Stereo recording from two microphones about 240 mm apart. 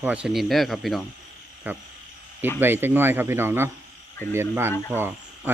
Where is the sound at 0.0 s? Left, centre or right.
Centre.